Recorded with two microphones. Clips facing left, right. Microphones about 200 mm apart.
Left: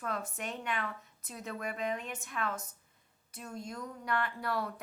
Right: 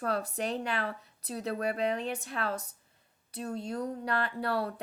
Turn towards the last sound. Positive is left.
turn(degrees=-30)  # may be behind; listen again after turning